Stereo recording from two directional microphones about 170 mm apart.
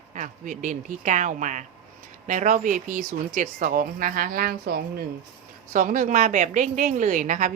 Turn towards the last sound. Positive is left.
turn(degrees=-45)  # may be behind; listen again after turning